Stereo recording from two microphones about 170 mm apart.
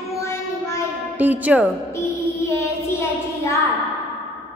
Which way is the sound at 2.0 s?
15° left (ahead or behind).